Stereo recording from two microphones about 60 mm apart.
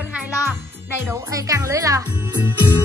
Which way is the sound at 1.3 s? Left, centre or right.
Right.